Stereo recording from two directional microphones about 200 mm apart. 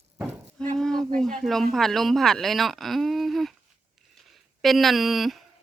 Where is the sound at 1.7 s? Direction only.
Centre (ahead or behind).